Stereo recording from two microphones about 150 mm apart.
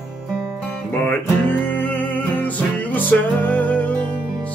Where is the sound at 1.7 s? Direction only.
10° left (ahead or behind).